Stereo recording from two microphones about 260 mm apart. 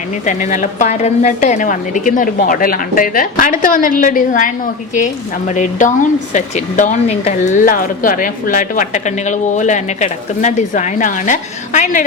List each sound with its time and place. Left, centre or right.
0.3 s a woman's voice: left